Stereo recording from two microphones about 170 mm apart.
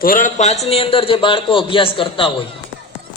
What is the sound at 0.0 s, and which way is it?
A man's voice, 55° left (ahead or behind).